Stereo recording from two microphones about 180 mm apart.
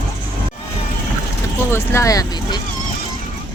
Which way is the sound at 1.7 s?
15° left (ahead or behind).